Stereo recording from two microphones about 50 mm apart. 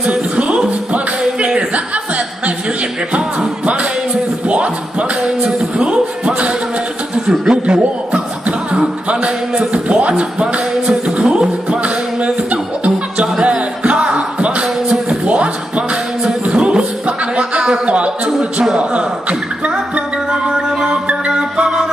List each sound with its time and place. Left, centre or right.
0.0 s music: right
3.1 s music: right
5.2 s music: right
7.2 s chuckle: centre
9.2 s a capella: right
14.9 s music: right
16.3 s a capella: right
17.4 s a sound: centre
20.2 s music: centre